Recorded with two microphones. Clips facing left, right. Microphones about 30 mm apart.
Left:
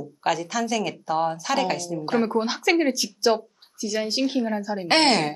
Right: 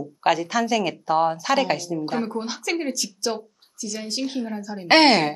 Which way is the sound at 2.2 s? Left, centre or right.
Left.